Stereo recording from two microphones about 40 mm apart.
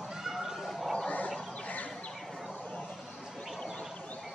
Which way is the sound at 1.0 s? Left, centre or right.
Left.